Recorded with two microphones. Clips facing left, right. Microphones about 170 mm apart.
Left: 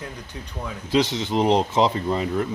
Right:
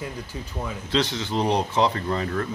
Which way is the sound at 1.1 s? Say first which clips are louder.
Left 4 dB; 15° left (ahead or behind).